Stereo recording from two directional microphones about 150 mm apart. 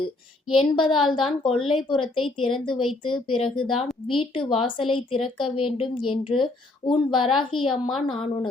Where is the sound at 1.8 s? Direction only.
35° left (ahead or behind).